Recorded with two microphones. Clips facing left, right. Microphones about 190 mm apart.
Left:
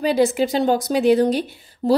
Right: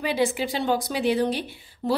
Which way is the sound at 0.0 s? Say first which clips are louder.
Left 7 dB; 40° left (ahead or behind).